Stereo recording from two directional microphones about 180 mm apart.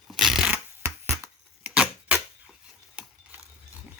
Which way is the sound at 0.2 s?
Centre (ahead or behind).